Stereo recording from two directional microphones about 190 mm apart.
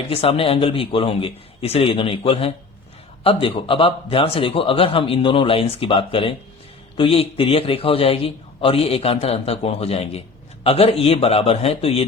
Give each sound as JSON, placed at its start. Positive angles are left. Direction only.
{"t": 0.1, "sound": "a man's voice", "side_deg": 30}